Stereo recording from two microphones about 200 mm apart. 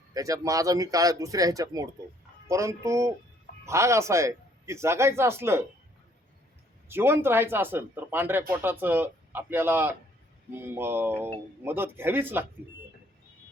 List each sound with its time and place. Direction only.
0.1 s speech: 15° right (ahead or behind)
6.8 s speech: 10° right (ahead or behind)